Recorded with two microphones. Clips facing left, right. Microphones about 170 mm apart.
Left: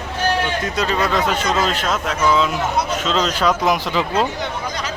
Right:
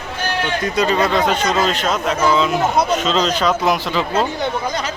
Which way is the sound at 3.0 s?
5° left (ahead or behind).